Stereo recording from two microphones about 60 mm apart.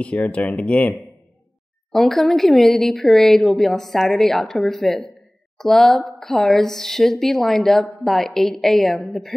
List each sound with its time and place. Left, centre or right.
0.0 s speech: left
1.9 s speech: centre